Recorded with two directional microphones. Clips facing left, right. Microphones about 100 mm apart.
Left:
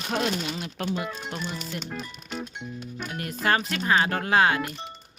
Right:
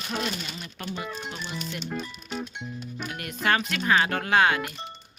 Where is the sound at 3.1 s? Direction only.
30° left (ahead or behind).